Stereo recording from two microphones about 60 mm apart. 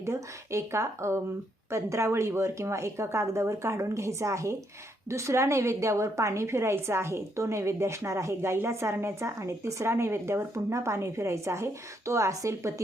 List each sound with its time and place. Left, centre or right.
0.0 s a woman's voice: right